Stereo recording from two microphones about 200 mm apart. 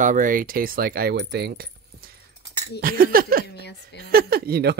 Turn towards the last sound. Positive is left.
turn(degrees=-50)  # may be behind; listen again after turning